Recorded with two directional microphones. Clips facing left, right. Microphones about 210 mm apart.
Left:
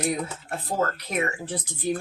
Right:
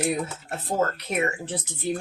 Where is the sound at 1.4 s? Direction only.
25° right (ahead or behind).